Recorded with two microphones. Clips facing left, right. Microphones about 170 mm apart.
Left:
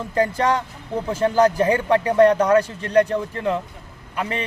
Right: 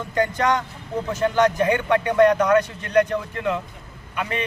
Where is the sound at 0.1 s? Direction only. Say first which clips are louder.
Left 1 dB; 30° left (ahead or behind).